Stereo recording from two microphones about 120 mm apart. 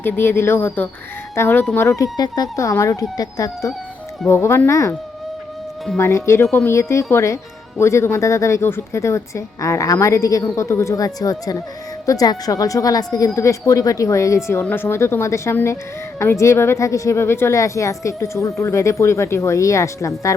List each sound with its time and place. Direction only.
0.0 s a woman's voice: 20° left (ahead or behind)
6.0 s a woman's voice: 20° left (ahead or behind)